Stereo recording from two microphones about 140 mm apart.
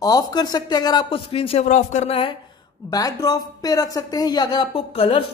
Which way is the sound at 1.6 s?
55° left (ahead or behind).